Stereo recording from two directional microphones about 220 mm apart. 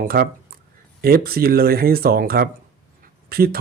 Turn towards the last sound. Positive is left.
turn(degrees=-45)  # may be behind; listen again after turning